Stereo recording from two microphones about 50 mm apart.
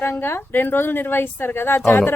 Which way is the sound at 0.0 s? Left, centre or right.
Left.